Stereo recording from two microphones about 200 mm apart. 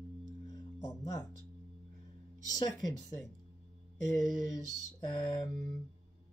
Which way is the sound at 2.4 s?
20° left (ahead or behind).